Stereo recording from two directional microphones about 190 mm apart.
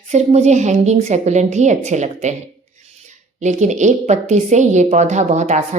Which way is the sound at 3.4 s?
40° right (ahead or behind).